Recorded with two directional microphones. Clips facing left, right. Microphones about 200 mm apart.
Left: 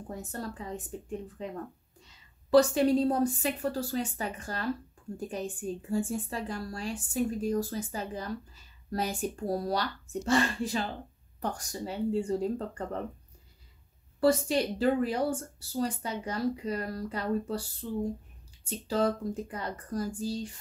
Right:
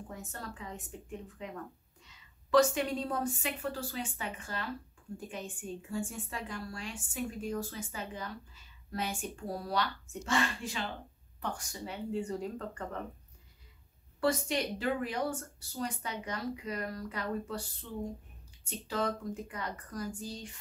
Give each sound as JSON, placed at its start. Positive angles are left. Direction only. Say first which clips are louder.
{"t": 0.1, "sound": "a woman's voice", "louder": "left 10 dB", "side_deg": 35}
{"t": 14.2, "sound": "a woman's voice", "louder": "left 6 dB", "side_deg": 35}